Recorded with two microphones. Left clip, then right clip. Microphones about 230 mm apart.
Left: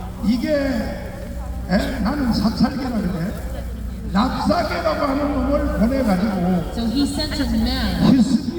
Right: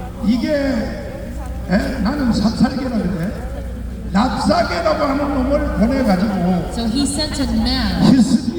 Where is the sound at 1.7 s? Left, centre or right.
Centre.